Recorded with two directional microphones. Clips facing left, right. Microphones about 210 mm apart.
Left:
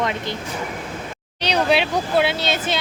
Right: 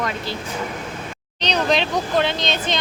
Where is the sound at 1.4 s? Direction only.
10° left (ahead or behind).